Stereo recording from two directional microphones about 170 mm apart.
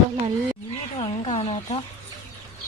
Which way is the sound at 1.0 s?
35° left (ahead or behind).